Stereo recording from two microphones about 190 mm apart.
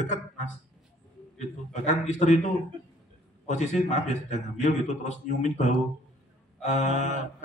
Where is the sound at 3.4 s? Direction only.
40° left (ahead or behind).